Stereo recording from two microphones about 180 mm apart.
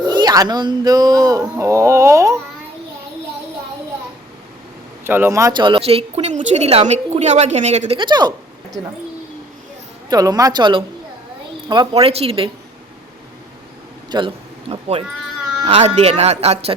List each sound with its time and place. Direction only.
0.0 s speech: 25° right (ahead or behind)
5.0 s speech: 10° right (ahead or behind)
10.1 s speech: 20° right (ahead or behind)
14.1 s speech: 25° right (ahead or behind)